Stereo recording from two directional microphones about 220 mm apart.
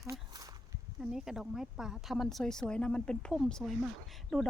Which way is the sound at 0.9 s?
Centre (ahead or behind).